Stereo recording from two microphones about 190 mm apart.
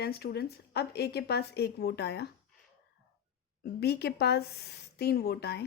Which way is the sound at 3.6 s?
60° left (ahead or behind).